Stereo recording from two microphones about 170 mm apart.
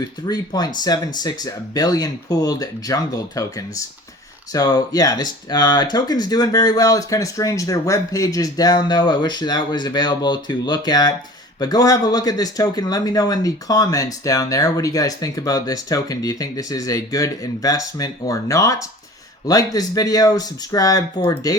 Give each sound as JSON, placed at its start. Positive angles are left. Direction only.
{"t": 0.3, "sound": "speech", "side_deg": 25}